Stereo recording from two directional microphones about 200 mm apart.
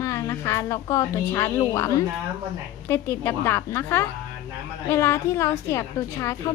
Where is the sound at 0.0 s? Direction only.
15° left (ahead or behind).